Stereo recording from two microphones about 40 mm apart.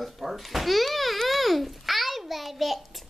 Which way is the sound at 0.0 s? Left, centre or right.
Centre.